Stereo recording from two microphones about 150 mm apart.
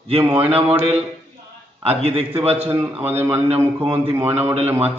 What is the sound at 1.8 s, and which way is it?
Speech, 40° right (ahead or behind).